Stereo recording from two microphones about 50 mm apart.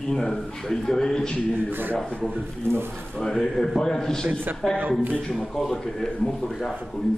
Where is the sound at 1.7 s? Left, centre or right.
Right.